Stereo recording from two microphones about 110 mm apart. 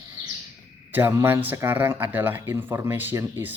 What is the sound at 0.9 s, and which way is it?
Speech, 20° right (ahead or behind).